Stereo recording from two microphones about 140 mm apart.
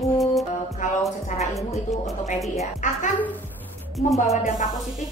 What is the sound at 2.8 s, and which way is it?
Speech, 65° left (ahead or behind).